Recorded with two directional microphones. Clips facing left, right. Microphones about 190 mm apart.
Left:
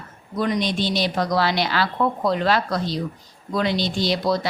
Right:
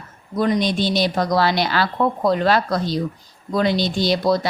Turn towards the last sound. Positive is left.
turn(degrees=-45)  # may be behind; listen again after turning